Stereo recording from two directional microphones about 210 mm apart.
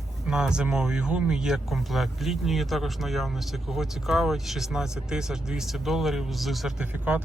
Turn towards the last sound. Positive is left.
turn(degrees=-5)  # may be behind; listen again after turning